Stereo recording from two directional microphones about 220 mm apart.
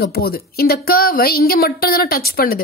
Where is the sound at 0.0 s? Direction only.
45° left (ahead or behind).